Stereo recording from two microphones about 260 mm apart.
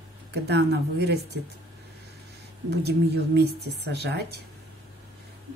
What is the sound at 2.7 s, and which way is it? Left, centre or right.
A woman's voice, right.